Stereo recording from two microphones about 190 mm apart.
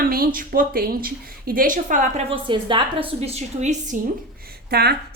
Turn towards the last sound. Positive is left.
turn(degrees=-60)  # may be behind; listen again after turning